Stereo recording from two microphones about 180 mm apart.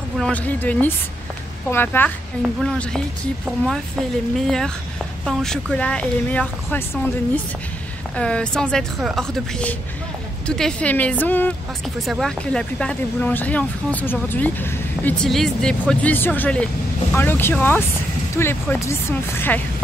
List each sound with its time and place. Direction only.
0.2 s speech: 10° left (ahead or behind)
4.4 s speech: centre (ahead or behind)
8.2 s speech: 5° left (ahead or behind)